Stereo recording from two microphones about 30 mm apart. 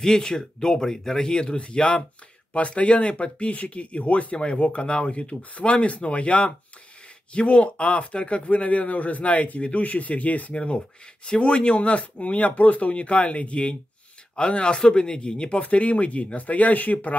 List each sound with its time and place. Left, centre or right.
0.0 s speech: left
4.4 s speech: left
10.5 s speech: left
15.6 s speech: left